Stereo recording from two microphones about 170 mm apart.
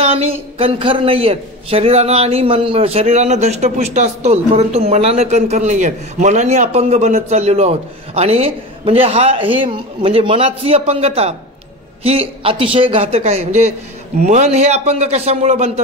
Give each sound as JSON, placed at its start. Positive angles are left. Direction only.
{"t": 0.0, "sound": "speech", "side_deg": -35}